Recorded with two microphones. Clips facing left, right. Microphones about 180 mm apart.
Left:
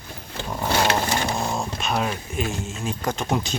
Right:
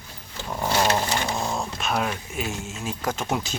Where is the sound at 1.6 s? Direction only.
Centre (ahead or behind).